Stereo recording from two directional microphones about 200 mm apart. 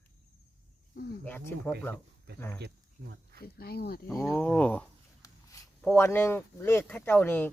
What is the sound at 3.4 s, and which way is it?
Speech, 50° left (ahead or behind).